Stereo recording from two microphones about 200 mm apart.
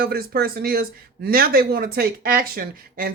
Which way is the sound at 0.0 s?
50° right (ahead or behind).